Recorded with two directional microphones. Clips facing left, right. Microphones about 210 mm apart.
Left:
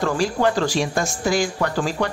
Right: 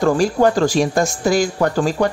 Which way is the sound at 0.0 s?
45° right (ahead or behind).